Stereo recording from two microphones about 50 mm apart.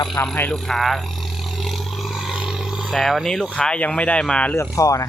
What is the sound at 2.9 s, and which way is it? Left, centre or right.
Speech, centre.